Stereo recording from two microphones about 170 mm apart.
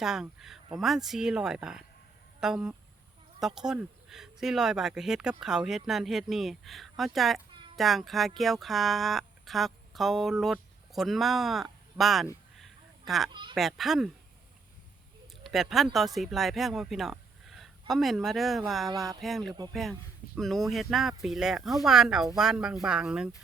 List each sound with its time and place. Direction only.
0.0 s speech: 5° right (ahead or behind)
12.5 s fowl: centre (ahead or behind)
13.3 s speech: 30° right (ahead or behind)
13.6 s speech: centre (ahead or behind)
15.4 s speech: centre (ahead or behind)
18.9 s speech: 20° right (ahead or behind)
19.2 s speech: centre (ahead or behind)